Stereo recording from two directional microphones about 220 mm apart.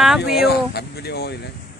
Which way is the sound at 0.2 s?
45° left (ahead or behind).